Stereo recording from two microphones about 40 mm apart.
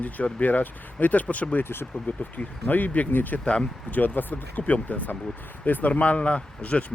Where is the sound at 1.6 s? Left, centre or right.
Left.